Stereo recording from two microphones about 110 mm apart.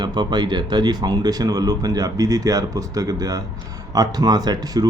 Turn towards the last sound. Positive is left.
turn(degrees=-35)  # may be behind; listen again after turning